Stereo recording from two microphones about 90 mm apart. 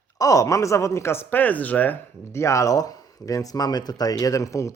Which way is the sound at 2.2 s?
30° left (ahead or behind).